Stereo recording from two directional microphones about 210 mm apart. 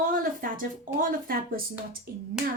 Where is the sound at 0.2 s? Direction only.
40° right (ahead or behind).